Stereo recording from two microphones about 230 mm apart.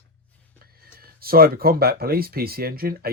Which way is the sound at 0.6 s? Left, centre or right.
Right.